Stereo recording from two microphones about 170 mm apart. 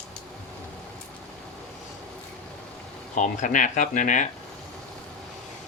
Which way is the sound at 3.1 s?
50° left (ahead or behind).